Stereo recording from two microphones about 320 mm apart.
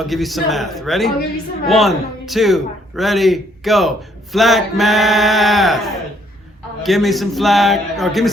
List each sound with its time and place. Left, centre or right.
0.0 s a man's voice: centre
6.8 s a man's voice: centre